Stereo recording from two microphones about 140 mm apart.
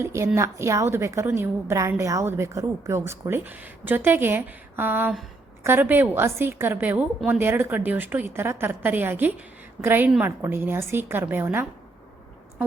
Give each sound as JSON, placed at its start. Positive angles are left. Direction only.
{"t": 0.0, "sound": "a woman's voice", "side_deg": -20}